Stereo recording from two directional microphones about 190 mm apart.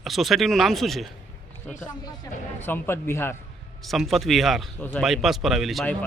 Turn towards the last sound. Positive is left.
turn(degrees=0)  # may be behind; listen again after turning